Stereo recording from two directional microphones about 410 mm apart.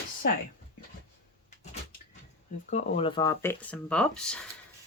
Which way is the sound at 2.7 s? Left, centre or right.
Centre.